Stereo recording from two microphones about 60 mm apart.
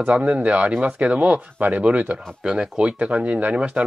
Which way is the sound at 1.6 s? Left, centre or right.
Right.